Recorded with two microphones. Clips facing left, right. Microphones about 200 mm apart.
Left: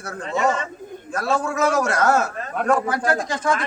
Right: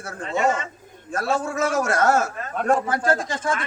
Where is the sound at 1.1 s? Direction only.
25° right (ahead or behind).